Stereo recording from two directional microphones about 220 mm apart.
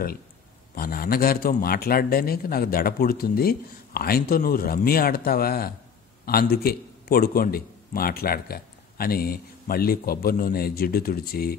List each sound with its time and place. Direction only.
0.7 s a man's voice: 45° left (ahead or behind)